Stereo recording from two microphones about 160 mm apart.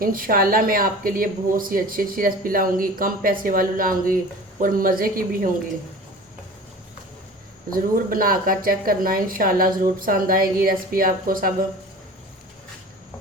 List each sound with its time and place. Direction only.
0.0 s speech: 60° right (ahead or behind)
7.7 s speech: 60° right (ahead or behind)